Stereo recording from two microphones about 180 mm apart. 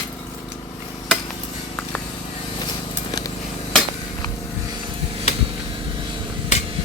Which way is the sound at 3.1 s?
20° left (ahead or behind).